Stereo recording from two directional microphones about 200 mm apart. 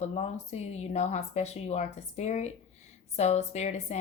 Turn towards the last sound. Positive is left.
turn(degrees=35)  # may be behind; listen again after turning